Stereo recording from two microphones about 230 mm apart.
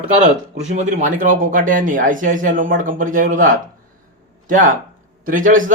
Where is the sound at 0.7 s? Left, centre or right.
Right.